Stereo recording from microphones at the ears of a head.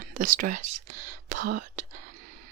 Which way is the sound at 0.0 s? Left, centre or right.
Right.